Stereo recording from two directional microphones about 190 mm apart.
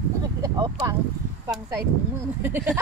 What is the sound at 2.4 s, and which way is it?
Speech, 10° right (ahead or behind).